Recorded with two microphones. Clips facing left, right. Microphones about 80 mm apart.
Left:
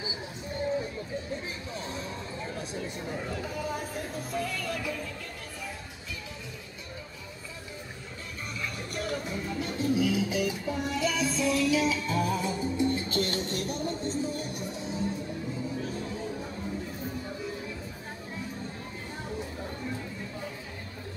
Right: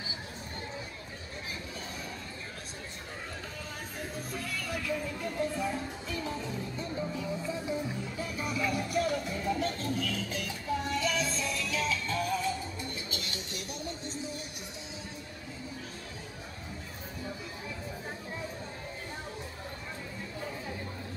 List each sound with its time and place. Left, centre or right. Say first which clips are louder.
4.3 s music: left 5 dB; centre
8.5 s music: right 6 dB; centre
12.9 s music: left 10 dB; left